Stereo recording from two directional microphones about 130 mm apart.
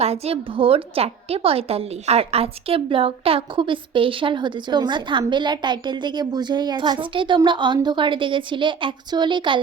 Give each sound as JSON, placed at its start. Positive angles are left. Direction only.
{"t": 0.0, "sound": "a woman's voice", "side_deg": -50}